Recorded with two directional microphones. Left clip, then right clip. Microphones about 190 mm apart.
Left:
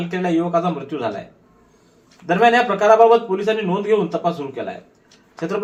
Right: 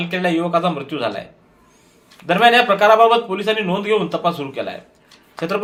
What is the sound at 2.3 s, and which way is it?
A man's voice, 20° right (ahead or behind).